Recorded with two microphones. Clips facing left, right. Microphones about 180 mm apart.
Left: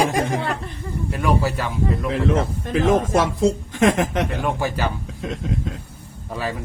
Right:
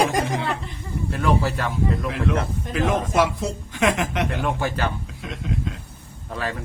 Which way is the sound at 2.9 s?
45° left (ahead or behind).